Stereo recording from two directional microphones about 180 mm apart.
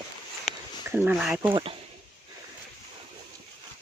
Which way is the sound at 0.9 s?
5° right (ahead or behind).